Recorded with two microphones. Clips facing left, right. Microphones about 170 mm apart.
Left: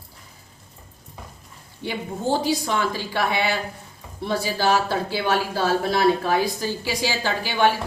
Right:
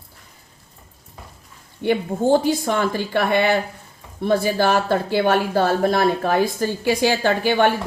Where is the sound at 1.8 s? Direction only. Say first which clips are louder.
Right 8 dB; 55° right (ahead or behind).